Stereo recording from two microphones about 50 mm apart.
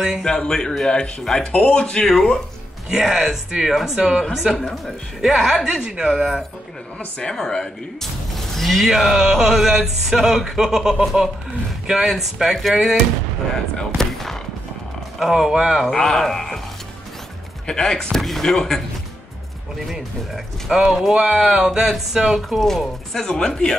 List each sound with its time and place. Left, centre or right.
0.2 s speech: centre
2.9 s speech: centre
4.6 s speech: centre
7.2 s speech: centre
8.9 s speech: centre
13.7 s a sound: centre
15.1 s speech: centre
15.9 s speech: centre
17.6 s speech: centre
20.7 s speech: centre
22.5 s speech: centre